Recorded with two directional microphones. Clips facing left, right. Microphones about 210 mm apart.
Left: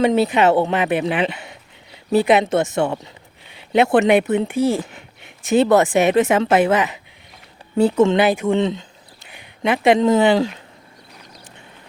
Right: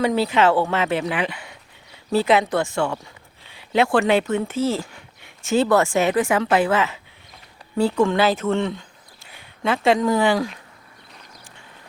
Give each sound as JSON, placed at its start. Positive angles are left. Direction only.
{"t": 0.0, "sound": "speech", "side_deg": 20}